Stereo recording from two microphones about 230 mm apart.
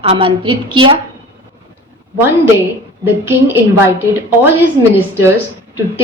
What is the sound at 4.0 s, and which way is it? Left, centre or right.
Speech, centre.